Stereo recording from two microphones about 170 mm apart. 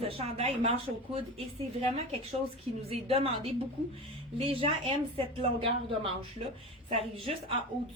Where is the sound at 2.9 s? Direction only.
35° right (ahead or behind).